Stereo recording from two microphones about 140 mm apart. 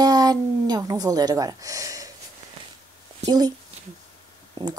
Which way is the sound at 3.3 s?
30° right (ahead or behind).